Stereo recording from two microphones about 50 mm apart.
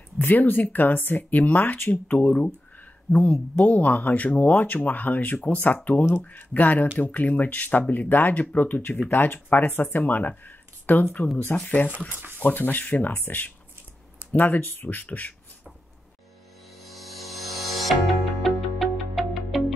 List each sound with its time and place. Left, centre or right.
0.3 s speech: left
12.1 s speech: right
12.4 s speech: left
16.9 s music: centre